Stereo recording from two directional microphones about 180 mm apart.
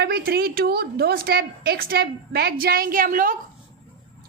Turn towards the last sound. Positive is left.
turn(degrees=-50)  # may be behind; listen again after turning